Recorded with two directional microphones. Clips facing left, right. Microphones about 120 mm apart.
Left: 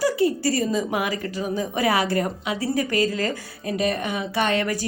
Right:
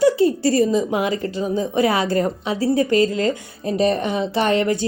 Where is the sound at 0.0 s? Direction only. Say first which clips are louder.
Right 5 dB; 25° right (ahead or behind).